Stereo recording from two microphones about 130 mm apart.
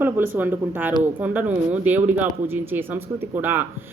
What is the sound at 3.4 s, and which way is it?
Speech, 15° right (ahead or behind).